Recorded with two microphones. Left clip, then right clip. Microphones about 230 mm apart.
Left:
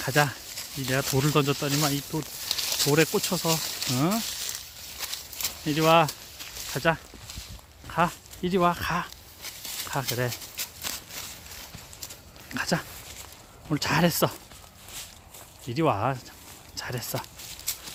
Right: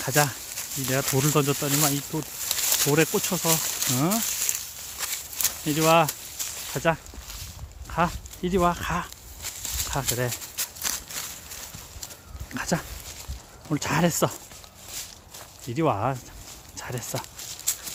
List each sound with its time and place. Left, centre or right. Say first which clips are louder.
0.0 s speech: even; centre
4.9 s a sound: right 3 dB; centre
6.4 s snake: right 7 dB; right
6.7 s speech: right 1 dB; centre
7.9 s a sound: even; centre
12.5 s a sound: even; centre
13.7 s speech: even; centre
15.7 s speech: even; centre
17.7 s horse: right 4 dB; centre